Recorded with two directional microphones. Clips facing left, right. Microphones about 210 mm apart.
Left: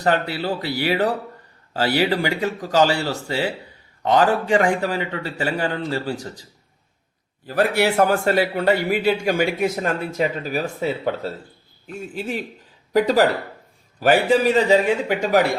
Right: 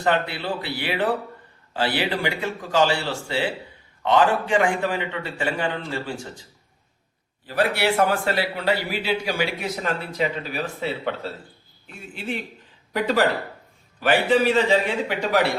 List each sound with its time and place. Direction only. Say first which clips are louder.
0.0 s a man's voice: left 2 dB; 40° left (ahead or behind)